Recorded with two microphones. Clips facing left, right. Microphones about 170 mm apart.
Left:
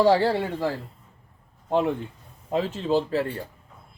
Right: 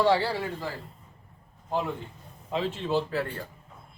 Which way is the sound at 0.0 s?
45° left (ahead or behind).